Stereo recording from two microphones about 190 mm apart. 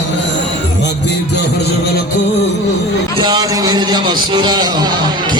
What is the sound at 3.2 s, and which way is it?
A man's voice, 20° right (ahead or behind).